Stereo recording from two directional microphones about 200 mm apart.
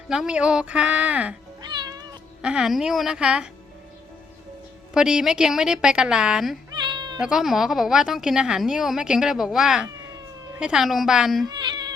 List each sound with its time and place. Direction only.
0.1 s a woman's voice: 5° right (ahead or behind)
1.6 s cat: 20° right (ahead or behind)
2.4 s a woman's voice: 5° right (ahead or behind)
4.9 s a woman's voice: 5° right (ahead or behind)
6.7 s cat: 20° right (ahead or behind)
7.2 s a woman's voice: 5° right (ahead or behind)